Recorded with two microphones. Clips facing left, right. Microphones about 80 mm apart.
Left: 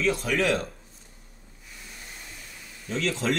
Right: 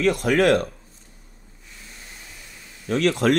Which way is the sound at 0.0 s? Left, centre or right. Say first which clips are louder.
Right 6 dB; right.